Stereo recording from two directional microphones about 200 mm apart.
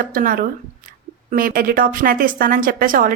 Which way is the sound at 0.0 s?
45° right (ahead or behind).